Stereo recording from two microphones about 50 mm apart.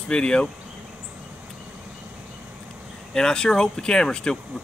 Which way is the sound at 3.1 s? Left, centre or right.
Centre.